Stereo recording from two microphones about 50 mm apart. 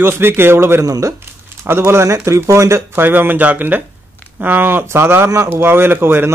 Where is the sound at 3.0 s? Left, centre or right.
Right.